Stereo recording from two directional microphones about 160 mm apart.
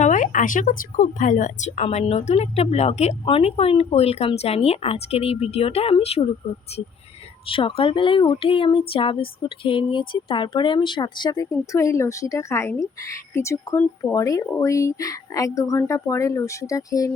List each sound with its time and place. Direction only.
0.0 s speech: 50° left (ahead or behind)
7.4 s speech: 35° left (ahead or behind)